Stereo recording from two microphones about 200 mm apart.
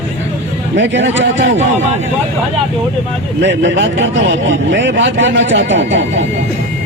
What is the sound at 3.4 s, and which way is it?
Speech, 65° right (ahead or behind).